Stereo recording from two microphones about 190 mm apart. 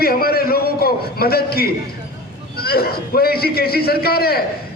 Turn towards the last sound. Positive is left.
turn(degrees=55)  # may be behind; listen again after turning